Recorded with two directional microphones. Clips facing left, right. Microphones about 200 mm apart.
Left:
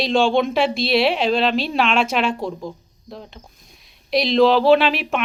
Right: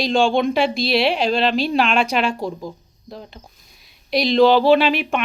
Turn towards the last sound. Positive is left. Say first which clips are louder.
# even
turn(degrees=0)  # may be behind; listen again after turning